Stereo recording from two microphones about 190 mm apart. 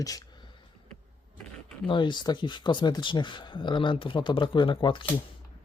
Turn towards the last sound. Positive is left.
turn(degrees=25)  # may be behind; listen again after turning